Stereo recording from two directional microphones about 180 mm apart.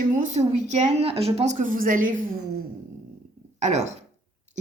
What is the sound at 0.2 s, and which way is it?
Speech, 40° right (ahead or behind).